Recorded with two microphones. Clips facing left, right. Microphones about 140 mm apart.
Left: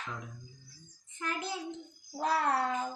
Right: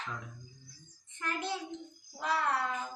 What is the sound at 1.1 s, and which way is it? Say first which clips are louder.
Speech: right 1 dB; 5° left (ahead or behind).